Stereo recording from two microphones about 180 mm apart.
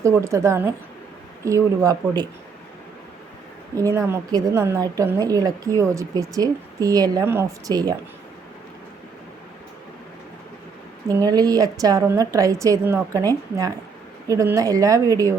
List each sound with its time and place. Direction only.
0.0 s speech: 15° right (ahead or behind)
3.8 s a woman's voice: 15° right (ahead or behind)
11.1 s a woman's voice: 20° right (ahead or behind)